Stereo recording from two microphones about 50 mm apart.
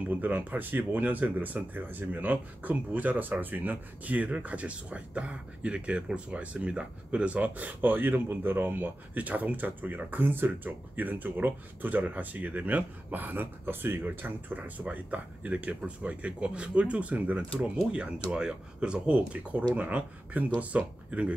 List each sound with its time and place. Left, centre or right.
0.1 s speech: right
17.9 s speech: centre